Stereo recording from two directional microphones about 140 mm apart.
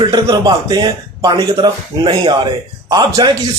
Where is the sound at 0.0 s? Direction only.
30° right (ahead or behind).